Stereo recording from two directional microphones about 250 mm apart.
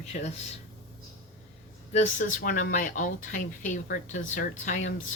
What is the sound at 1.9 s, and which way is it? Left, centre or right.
Speech, left.